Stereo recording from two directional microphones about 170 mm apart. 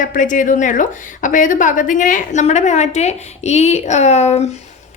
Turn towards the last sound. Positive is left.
turn(degrees=40)  # may be behind; listen again after turning